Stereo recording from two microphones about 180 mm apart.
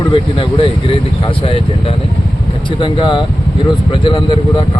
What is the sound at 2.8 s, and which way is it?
Speech, 25° left (ahead or behind).